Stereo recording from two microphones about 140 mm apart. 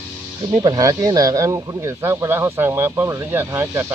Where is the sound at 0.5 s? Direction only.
25° right (ahead or behind).